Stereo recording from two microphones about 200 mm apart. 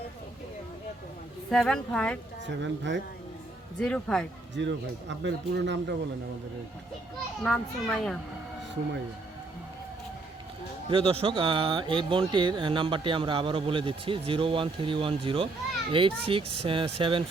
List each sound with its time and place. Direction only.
1.5 s a child's voice: 5° left (ahead or behind)
2.5 s speech: 60° right (ahead or behind)
3.8 s a child's voice: 5° left (ahead or behind)
4.5 s speech: 65° right (ahead or behind)
7.4 s a child's voice: centre (ahead or behind)
10.8 s speech: 25° right (ahead or behind)